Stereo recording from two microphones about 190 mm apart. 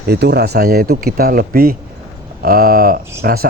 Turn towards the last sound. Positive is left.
turn(degrees=-55)  # may be behind; listen again after turning